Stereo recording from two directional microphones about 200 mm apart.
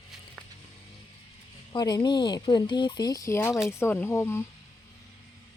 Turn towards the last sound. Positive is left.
turn(degrees=15)  # may be behind; listen again after turning